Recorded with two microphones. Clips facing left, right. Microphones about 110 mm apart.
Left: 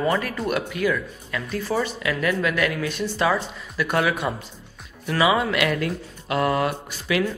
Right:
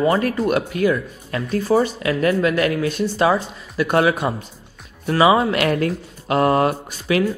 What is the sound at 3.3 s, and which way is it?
Speech, 30° right (ahead or behind).